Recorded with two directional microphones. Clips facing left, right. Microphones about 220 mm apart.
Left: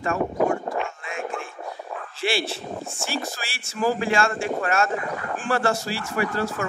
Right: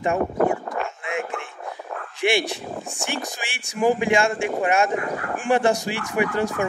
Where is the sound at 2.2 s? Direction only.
15° right (ahead or behind).